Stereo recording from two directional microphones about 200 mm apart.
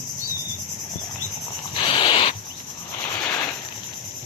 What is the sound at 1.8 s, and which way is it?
Owl, 25° left (ahead or behind).